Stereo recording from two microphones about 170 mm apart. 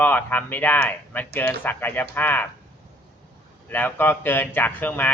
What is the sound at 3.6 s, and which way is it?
Speech, 10° left (ahead or behind).